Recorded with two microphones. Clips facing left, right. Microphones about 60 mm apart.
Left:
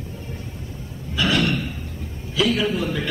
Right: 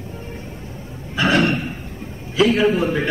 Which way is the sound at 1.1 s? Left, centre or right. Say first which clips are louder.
Right 4 dB; right.